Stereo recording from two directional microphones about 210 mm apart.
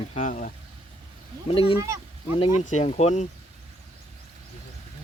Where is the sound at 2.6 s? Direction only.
35° left (ahead or behind).